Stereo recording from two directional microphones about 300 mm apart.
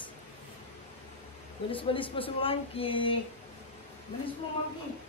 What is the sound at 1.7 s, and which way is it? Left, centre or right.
Speech, centre.